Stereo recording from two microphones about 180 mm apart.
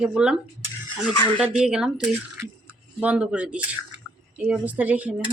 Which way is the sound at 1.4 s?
5° right (ahead or behind).